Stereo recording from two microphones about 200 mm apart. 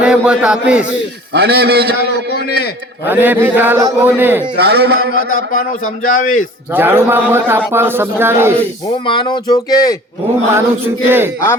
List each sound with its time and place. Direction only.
0.0 s a man's voice: 5° right (ahead or behind)
1.3 s a man's voice: 50° right (ahead or behind)
3.1 s a man's voice: 10° right (ahead or behind)
4.5 s speech: 55° right (ahead or behind)
6.1 s a man's voice: 40° left (ahead or behind)
6.7 s a man's voice: 10° right (ahead or behind)
9.0 s speech: 20° left (ahead or behind)
10.5 s a man's voice: 10° right (ahead or behind)